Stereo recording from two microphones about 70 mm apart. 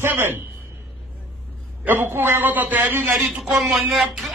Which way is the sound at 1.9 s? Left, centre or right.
Right.